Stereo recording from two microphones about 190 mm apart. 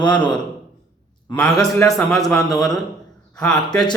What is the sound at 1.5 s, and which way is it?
Speech, 20° left (ahead or behind).